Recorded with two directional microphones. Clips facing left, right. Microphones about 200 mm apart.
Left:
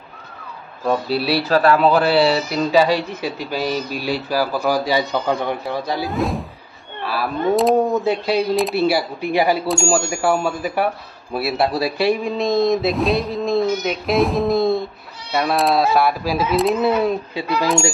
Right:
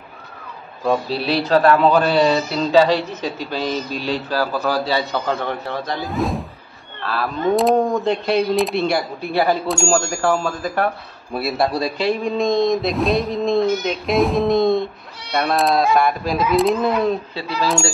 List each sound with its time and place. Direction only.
0.8 s speech: 5° left (ahead or behind)
6.1 s a man's voice: centre (ahead or behind)
7.0 s a sound: 10° left (ahead or behind)
7.5 s a man's voice: 5° left (ahead or behind)